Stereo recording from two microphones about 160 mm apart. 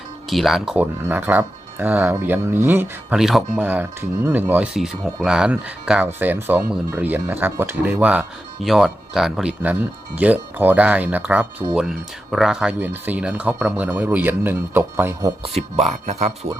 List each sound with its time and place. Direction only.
0.3 s speech: centre (ahead or behind)
3.2 s speech: centre (ahead or behind)
15.4 s speech: 40° right (ahead or behind)